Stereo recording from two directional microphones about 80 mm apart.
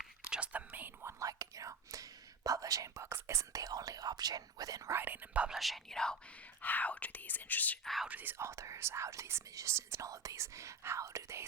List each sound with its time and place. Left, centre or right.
0.0 s whispering: centre
1.0 s speech: right
4.9 s speech: right
5.5 s speech: centre
6.6 s speech: left
8.0 s speech: right
8.4 s speech: right